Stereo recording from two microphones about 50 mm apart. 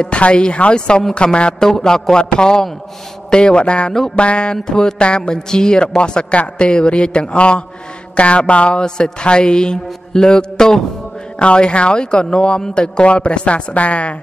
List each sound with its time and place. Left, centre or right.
0.0 s a man's voice: left